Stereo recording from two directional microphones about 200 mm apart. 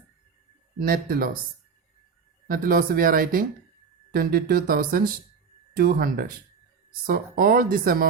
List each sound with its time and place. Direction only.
0.8 s speech: 45° right (ahead or behind)
2.5 s speech: 45° right (ahead or behind)